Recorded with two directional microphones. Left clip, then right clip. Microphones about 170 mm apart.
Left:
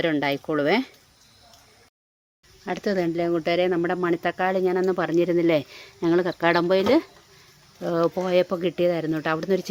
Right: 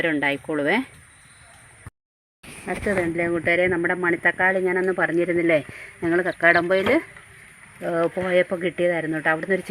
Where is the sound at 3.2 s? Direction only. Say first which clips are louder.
Right 3 dB; centre (ahead or behind).